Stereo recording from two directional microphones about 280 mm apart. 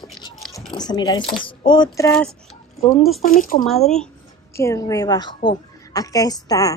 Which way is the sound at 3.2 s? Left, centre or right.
Left.